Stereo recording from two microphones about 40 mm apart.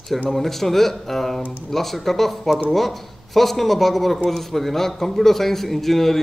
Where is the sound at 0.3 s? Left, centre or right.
Centre.